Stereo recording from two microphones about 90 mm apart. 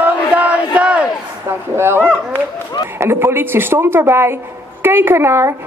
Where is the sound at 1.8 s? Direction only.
25° right (ahead or behind).